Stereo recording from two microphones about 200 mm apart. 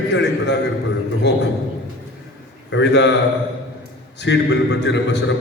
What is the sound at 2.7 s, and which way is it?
Speech, 60° left (ahead or behind).